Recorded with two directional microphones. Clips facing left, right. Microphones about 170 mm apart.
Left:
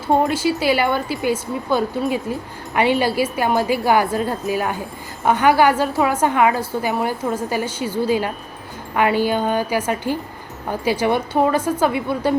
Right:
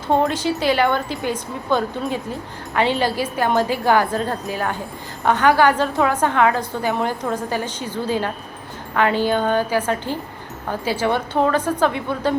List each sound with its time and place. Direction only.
0.1 s a woman's voice: 10° left (ahead or behind)